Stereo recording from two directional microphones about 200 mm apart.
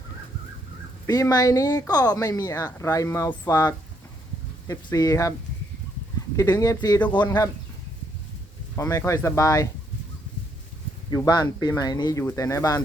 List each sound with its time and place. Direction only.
1.0 s speech: 20° left (ahead or behind)
6.3 s speech: 20° left (ahead or behind)
8.7 s speech: 15° left (ahead or behind)
11.1 s speech: 20° left (ahead or behind)